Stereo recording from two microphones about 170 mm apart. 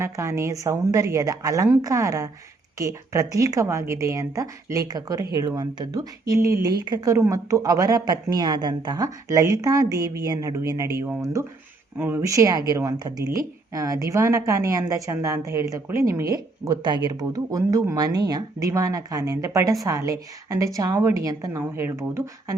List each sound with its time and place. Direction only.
0.0 s a woman's voice: 15° right (ahead or behind)